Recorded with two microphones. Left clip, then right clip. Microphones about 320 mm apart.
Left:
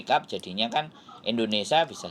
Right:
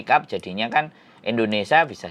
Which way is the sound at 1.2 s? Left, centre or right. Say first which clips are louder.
Right 5 dB; right.